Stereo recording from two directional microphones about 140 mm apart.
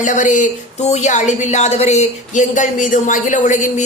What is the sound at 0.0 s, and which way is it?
Speech, 60° left (ahead or behind).